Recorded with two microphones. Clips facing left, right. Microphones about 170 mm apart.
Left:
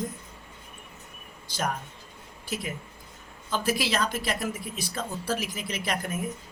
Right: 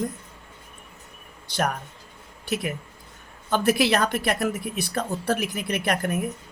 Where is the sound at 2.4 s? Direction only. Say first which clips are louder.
Right 6 dB; 65° right (ahead or behind).